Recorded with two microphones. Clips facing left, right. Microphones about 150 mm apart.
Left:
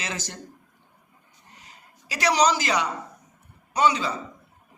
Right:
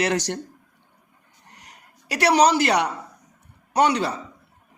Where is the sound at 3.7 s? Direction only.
70° right (ahead or behind).